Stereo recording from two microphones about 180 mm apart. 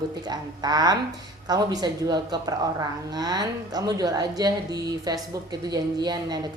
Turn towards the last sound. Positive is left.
turn(degrees=-25)  # may be behind; listen again after turning